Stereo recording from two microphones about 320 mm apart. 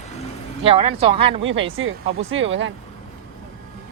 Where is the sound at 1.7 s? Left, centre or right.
Right.